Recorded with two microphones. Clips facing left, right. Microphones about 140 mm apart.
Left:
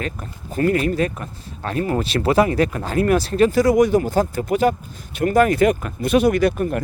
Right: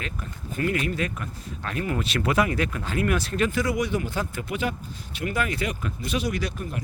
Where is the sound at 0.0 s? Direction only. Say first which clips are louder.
Left 6 dB; 40° left (ahead or behind).